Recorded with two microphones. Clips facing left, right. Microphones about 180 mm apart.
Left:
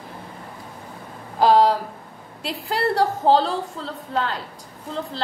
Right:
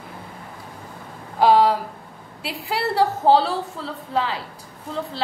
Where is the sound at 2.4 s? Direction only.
5° right (ahead or behind).